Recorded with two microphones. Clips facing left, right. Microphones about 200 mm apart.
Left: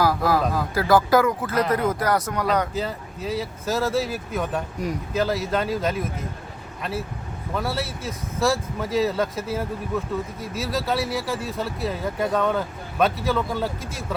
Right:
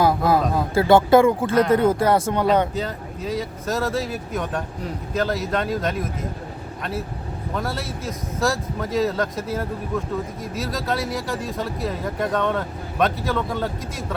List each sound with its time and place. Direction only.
0.0 s a sound: 25° right (ahead or behind)
0.5 s speech: 25° right (ahead or behind)
2.7 s speech: centre (ahead or behind)
7.5 s speech: centre (ahead or behind)